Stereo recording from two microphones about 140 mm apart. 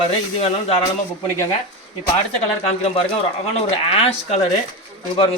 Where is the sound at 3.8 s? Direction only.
45° left (ahead or behind).